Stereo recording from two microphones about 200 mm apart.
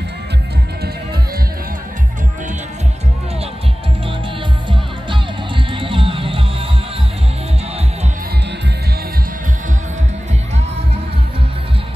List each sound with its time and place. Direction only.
5.8 s music: 25° right (ahead or behind)